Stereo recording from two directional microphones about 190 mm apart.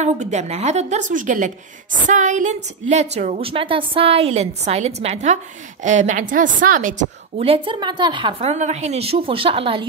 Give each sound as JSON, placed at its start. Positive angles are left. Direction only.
{"t": 0.0, "sound": "a woman's voice", "side_deg": -35}